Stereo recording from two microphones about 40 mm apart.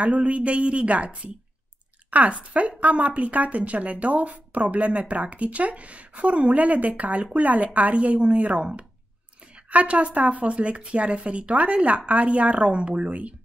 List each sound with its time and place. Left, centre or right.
0.0 s speech: right
2.0 s a sound: right
2.8 s speech: right
9.7 s speech: right